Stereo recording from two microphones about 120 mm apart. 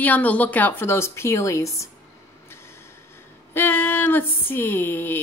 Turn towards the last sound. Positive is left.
turn(degrees=20)  # may be behind; listen again after turning